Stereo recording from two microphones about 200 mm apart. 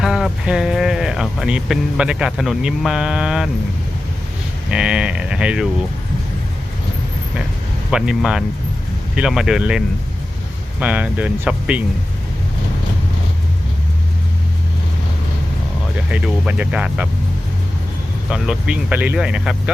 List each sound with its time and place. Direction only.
0.0 s speech: 5° right (ahead or behind)
4.7 s speech: 5° right (ahead or behind)
7.9 s speech: 5° right (ahead or behind)
16.1 s speech: 5° right (ahead or behind)
18.3 s speech: 5° right (ahead or behind)